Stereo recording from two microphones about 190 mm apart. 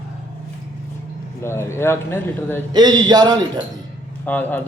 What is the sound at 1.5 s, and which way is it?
Speech, 15° left (ahead or behind).